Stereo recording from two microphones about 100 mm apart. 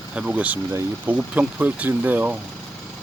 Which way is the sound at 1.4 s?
15° right (ahead or behind).